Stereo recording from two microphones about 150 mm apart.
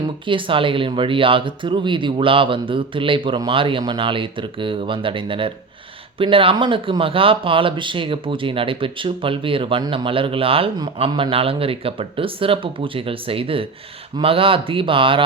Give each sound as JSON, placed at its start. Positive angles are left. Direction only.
{"t": 0.0, "sound": "speech", "side_deg": -35}